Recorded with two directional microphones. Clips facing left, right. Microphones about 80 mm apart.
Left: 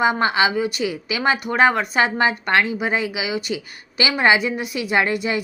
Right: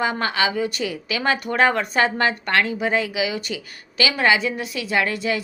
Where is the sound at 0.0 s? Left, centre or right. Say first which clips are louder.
Left 4 dB; centre.